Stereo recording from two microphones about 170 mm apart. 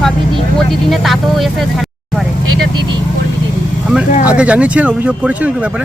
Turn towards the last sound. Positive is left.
turn(degrees=-5)  # may be behind; listen again after turning